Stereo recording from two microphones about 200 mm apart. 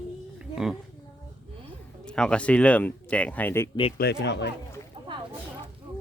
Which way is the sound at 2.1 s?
5° left (ahead or behind).